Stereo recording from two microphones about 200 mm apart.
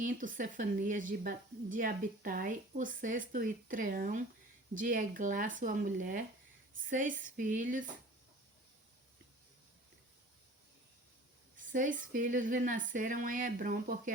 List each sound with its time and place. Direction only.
0.0 s a woman's voice: 40° right (ahead or behind)
11.5 s a woman's voice: 40° right (ahead or behind)